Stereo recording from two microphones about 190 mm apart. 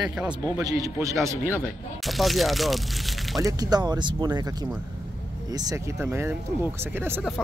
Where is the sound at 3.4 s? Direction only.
20° right (ahead or behind).